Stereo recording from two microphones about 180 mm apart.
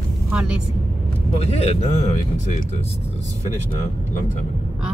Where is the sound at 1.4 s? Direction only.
35° left (ahead or behind).